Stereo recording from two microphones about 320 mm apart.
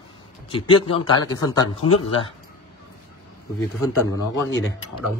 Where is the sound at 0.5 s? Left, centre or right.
Centre.